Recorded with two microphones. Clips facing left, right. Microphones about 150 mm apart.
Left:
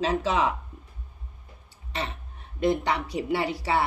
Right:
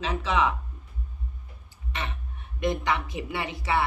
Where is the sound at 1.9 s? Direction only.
30° left (ahead or behind).